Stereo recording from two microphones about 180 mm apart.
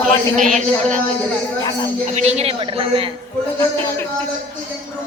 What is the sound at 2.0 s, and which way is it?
Speech, 40° right (ahead or behind).